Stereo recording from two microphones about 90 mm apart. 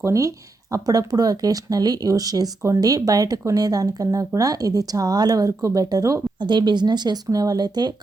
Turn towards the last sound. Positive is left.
turn(degrees=-50)  # may be behind; listen again after turning